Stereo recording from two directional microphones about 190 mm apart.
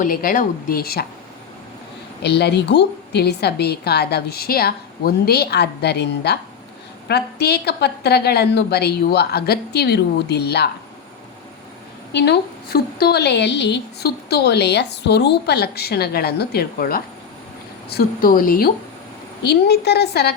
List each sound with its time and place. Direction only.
0.0 s speech: 45° left (ahead or behind)
2.2 s a woman's voice: 60° left (ahead or behind)
12.1 s a woman's voice: 60° left (ahead or behind)